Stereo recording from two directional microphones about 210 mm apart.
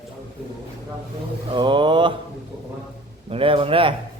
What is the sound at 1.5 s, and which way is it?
Speech, 25° right (ahead or behind).